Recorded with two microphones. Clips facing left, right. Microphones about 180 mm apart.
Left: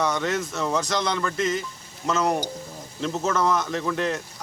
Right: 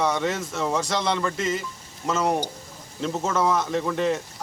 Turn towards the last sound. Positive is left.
turn(degrees=0)  # may be behind; listen again after turning